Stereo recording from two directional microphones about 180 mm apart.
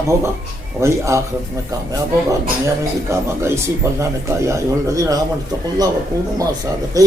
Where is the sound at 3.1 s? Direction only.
15° right (ahead or behind).